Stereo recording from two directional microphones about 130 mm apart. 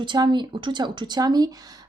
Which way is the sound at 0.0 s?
35° right (ahead or behind).